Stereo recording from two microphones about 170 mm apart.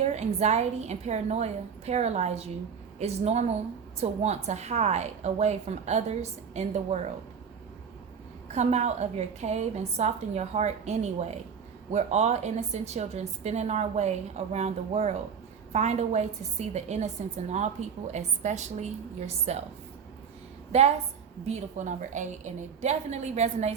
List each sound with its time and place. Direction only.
0.0 s a woman's voice: 40° right (ahead or behind)
8.5 s a woman's voice: 40° right (ahead or behind)
20.7 s a woman's voice: 40° right (ahead or behind)